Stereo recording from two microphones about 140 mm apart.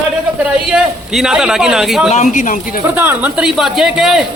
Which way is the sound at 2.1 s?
60° left (ahead or behind).